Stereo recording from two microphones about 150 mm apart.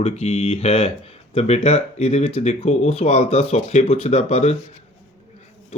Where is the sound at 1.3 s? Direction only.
45° left (ahead or behind).